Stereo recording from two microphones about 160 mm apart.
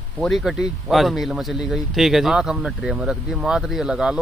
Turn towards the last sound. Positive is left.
turn(degrees=-5)  # may be behind; listen again after turning